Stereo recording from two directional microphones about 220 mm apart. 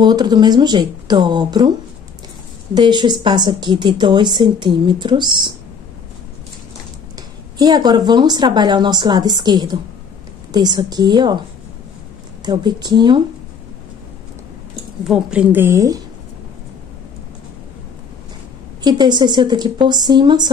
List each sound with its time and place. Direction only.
0.0 s a woman's voice: 20° right (ahead or behind)
2.7 s a woman's voice: 20° right (ahead or behind)
7.5 s a woman's voice: 15° right (ahead or behind)
12.4 s a woman's voice: 20° right (ahead or behind)
15.0 s a woman's voice: 5° right (ahead or behind)
18.9 s a woman's voice: 20° right (ahead or behind)